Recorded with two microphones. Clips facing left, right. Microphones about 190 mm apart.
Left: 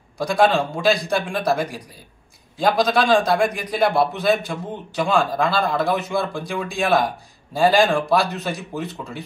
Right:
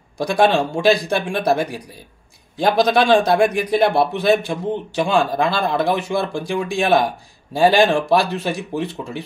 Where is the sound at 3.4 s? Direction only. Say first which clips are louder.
Right 4 dB; 10° right (ahead or behind).